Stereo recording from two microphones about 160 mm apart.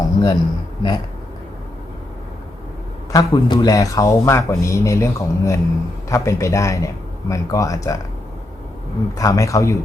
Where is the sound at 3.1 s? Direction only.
25° left (ahead or behind).